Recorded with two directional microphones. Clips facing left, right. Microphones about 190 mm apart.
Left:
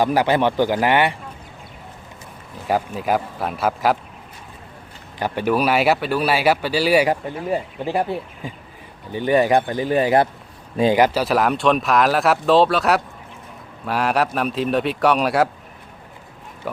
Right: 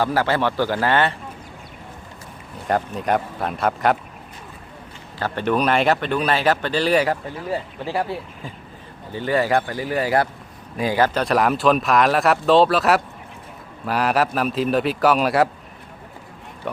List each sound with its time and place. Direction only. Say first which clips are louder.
0.0 s speech: left 3 dB; 15° left (ahead or behind)
2.6 s speech: left 1 dB; 5° left (ahead or behind)
5.2 s speech: left 1 dB; 10° left (ahead or behind)
11.2 s speech: even; centre (ahead or behind)
16.7 s speech: even; 5° left (ahead or behind)